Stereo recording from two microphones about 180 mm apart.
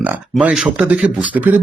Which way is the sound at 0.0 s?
5° right (ahead or behind).